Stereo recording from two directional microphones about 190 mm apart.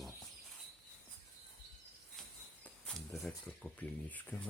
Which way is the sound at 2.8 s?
Centre (ahead or behind).